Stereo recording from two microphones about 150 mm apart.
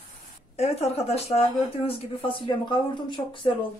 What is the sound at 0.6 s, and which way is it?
A woman's voice, 45° left (ahead or behind).